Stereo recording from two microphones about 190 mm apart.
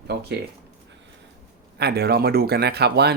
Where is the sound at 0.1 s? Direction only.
60° right (ahead or behind).